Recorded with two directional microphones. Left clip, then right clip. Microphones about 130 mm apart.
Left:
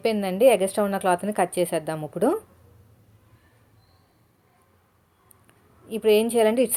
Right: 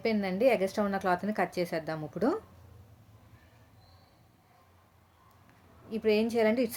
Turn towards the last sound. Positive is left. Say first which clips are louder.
# left 7 dB
turn(degrees=25)  # may be behind; listen again after turning